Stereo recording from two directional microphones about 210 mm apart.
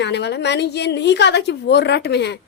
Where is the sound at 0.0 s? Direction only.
55° left (ahead or behind).